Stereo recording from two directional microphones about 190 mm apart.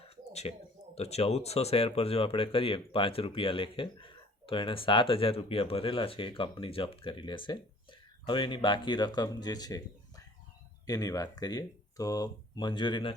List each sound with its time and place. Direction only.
0.0 s a sound: 30° left (ahead or behind)
0.9 s speech: 35° left (ahead or behind)
10.8 s speech: 20° left (ahead or behind)